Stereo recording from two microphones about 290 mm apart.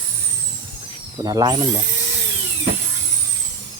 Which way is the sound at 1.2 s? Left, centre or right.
Centre.